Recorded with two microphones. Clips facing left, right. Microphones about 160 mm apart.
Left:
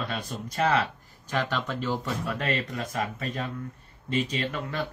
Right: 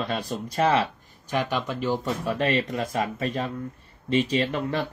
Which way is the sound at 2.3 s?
30° right (ahead or behind).